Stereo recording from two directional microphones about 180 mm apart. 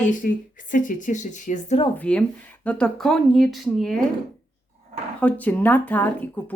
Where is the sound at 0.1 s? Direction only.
50° left (ahead or behind).